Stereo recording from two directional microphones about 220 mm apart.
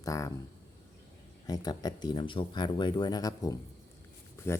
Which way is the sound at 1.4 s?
15° left (ahead or behind).